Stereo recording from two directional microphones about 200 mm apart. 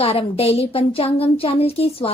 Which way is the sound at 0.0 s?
30° left (ahead or behind).